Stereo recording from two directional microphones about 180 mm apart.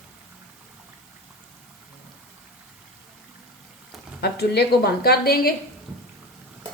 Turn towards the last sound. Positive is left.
turn(degrees=60)  # may be behind; listen again after turning